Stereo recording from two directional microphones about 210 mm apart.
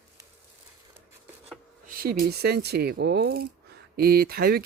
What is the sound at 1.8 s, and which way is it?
Speech, 45° right (ahead or behind).